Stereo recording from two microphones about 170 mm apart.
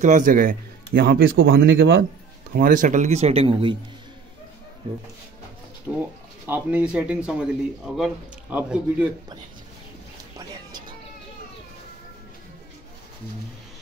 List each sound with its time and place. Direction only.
0.0 s speech: 50° right (ahead or behind); by 2.0 s 90° right
2.5 s speech: 55° right (ahead or behind); by 3.7 s 35° right (ahead or behind)
5.9 s speech: 10° right (ahead or behind)